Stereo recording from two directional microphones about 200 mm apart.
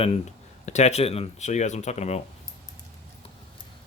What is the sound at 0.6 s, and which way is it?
Speech, 35° left (ahead or behind).